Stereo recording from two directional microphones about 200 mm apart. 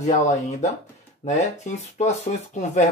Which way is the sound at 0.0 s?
35° left (ahead or behind).